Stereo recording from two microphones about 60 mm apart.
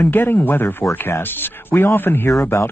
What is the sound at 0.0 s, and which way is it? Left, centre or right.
Speech, left.